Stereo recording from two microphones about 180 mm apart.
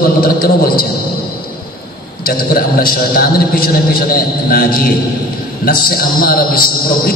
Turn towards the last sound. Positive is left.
turn(degrees=55)  # may be behind; listen again after turning